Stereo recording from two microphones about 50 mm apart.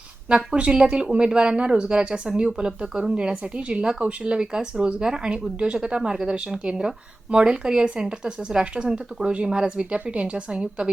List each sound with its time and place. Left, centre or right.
0.3 s speech: centre